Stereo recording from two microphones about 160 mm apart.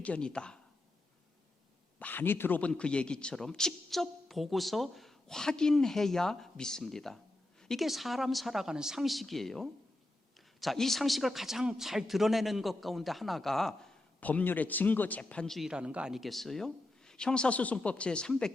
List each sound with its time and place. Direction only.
0.0 s a man's voice: 5° left (ahead or behind)
2.0 s a man's voice: 10° left (ahead or behind)